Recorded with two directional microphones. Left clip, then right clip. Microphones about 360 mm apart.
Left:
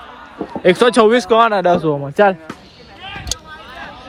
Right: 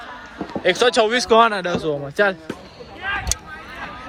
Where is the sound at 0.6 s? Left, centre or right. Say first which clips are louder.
Left 5 dB; centre.